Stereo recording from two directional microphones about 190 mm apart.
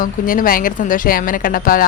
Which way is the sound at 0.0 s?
45° left (ahead or behind).